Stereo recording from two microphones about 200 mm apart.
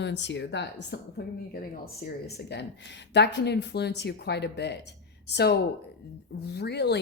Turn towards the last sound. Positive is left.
turn(degrees=55)  # may be behind; listen again after turning